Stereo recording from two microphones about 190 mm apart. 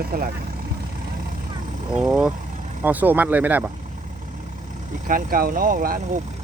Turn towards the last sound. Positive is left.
turn(degrees=-50)  # may be behind; listen again after turning